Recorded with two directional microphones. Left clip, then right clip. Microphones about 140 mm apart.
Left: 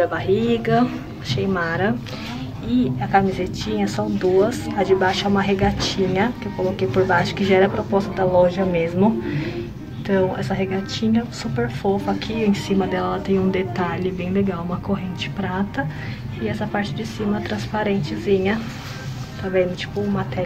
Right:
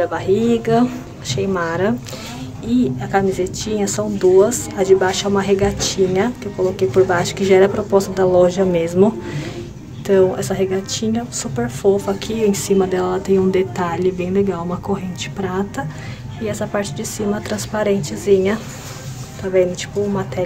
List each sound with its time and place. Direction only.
0.0 s a woman's voice: 25° right (ahead or behind)